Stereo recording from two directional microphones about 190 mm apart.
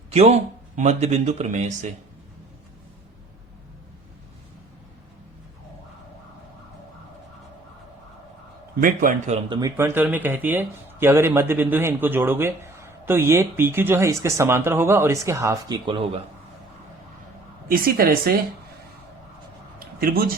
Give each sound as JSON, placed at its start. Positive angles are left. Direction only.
{"t": 0.1, "sound": "speech", "side_deg": -35}
{"t": 8.8, "sound": "a woman's voice", "side_deg": -45}
{"t": 9.5, "sound": "speech", "side_deg": -20}
{"t": 15.9, "sound": "speech", "side_deg": -30}
{"t": 17.7, "sound": "a woman's voice", "side_deg": -50}
{"t": 20.0, "sound": "a woman's voice", "side_deg": -50}